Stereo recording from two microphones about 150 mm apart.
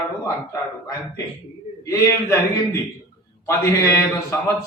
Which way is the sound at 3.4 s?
15° left (ahead or behind).